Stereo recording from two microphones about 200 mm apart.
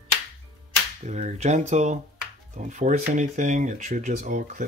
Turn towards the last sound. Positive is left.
turn(degrees=-40)  # may be behind; listen again after turning